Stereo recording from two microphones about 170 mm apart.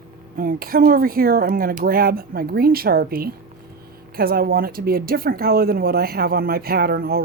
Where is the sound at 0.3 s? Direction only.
60° right (ahead or behind).